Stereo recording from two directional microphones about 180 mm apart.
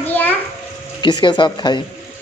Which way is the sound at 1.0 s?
25° left (ahead or behind).